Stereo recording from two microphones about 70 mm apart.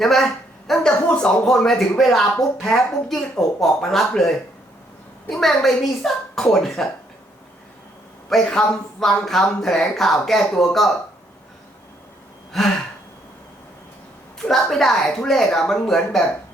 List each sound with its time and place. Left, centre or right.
0.0 s speech: centre
5.3 s speech: centre
8.3 s speech: centre
12.5 s speech: centre
14.3 s speech: centre